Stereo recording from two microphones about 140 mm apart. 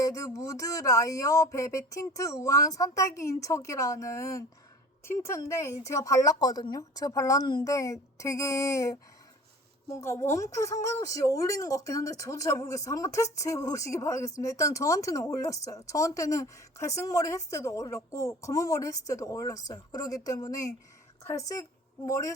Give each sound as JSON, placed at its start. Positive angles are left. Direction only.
{"t": 0.0, "sound": "speech", "side_deg": 25}